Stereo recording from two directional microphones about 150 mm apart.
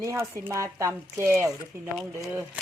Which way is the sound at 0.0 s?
20° right (ahead or behind).